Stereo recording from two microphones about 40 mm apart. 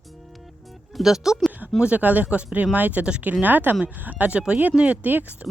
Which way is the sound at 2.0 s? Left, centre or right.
Right.